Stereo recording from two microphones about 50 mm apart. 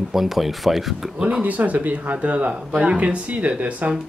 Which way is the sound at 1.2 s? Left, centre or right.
Right.